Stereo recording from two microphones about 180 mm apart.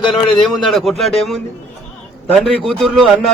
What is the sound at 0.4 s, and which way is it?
A man's voice, centre (ahead or behind).